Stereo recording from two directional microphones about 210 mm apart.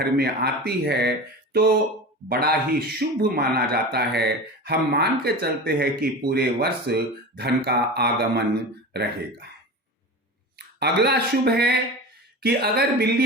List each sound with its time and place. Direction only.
0.0 s a man's voice: 50° right (ahead or behind)
2.3 s a man's voice: 45° right (ahead or behind)
10.8 s a man's voice: 50° right (ahead or behind)